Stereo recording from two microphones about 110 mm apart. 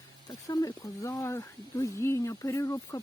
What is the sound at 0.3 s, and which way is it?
Speech, 35° left (ahead or behind).